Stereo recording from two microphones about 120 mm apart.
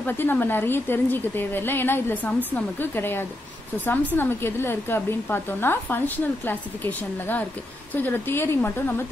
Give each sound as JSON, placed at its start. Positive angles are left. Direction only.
{"t": 0.0, "sound": "speech", "side_deg": 15}